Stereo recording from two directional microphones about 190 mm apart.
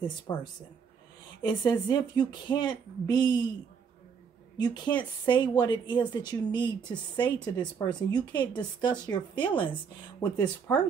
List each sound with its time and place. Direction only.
0.0 s speech: 25° left (ahead or behind)
4.6 s speech: 25° left (ahead or behind)